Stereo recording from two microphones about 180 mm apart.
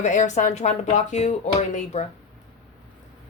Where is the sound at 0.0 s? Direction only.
40° left (ahead or behind).